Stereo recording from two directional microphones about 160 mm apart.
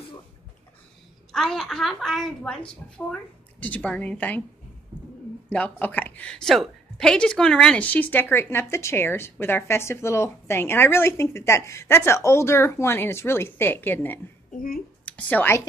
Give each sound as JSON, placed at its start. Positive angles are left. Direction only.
{"t": 1.3, "sound": "a woman's voice", "side_deg": 5}
{"t": 5.5, "sound": "a woman's voice", "side_deg": 10}
{"t": 14.5, "sound": "speech", "side_deg": 60}
{"t": 15.0, "sound": "speech", "side_deg": 10}